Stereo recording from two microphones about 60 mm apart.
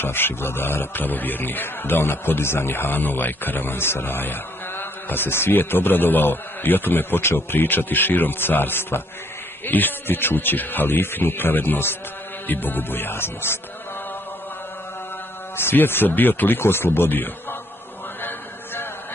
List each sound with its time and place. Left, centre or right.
0.0 s a man's voice: left
15.5 s a man's voice: left